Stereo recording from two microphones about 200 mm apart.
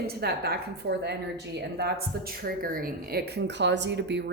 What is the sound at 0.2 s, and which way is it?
Speech, 50° right (ahead or behind).